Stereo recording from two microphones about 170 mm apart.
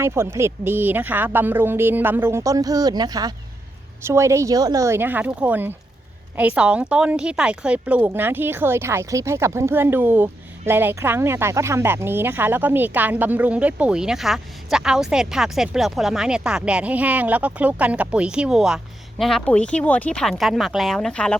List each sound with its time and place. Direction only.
0.0 s speech: 15° right (ahead or behind); by 21.3 s 5° left (ahead or behind)